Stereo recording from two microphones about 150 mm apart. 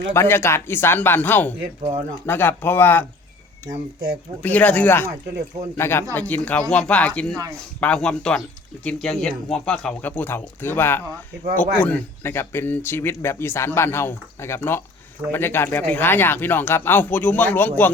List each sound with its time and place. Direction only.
0.1 s speech: 15° left (ahead or behind)
4.4 s a man's voice: 10° left (ahead or behind)